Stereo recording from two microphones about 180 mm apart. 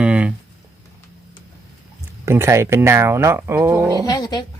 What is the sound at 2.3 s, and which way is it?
Speech, 15° right (ahead or behind).